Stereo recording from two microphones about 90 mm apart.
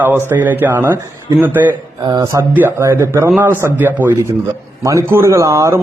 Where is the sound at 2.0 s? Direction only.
50° right (ahead or behind).